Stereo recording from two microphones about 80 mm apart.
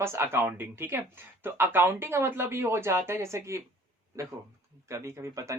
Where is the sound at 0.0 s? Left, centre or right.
Right.